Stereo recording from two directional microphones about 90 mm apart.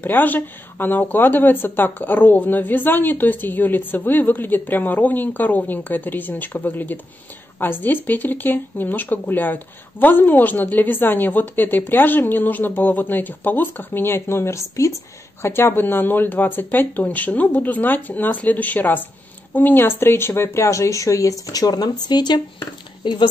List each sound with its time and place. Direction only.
0.0 s speech: 20° left (ahead or behind); by 23.2 s 60° left (ahead or behind)